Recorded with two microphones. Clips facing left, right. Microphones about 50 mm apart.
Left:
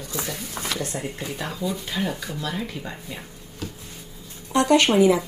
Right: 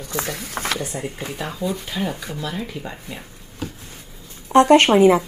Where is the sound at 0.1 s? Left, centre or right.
Right.